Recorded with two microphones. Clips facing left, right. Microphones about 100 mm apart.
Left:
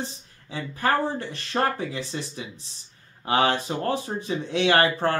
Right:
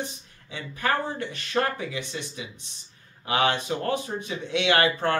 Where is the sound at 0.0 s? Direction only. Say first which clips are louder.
Even; 35° left (ahead or behind).